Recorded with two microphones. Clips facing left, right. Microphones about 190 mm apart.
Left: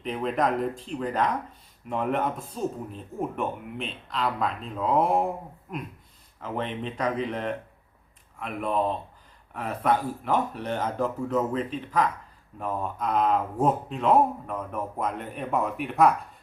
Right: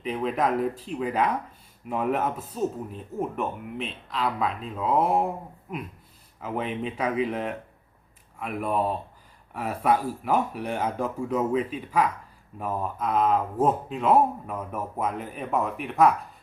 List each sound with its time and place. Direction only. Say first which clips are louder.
0.0 s speech: even; centre (ahead or behind)